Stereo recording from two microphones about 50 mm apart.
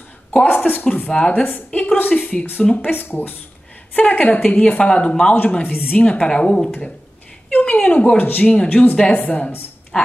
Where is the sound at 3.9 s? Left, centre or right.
Left.